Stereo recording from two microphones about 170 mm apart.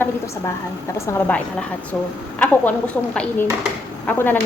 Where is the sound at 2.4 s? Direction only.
10° left (ahead or behind).